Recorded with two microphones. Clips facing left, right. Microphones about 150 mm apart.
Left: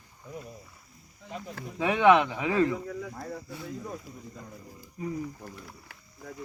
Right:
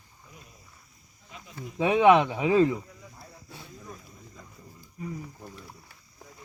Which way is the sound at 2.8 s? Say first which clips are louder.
Left 13 dB; 85° left.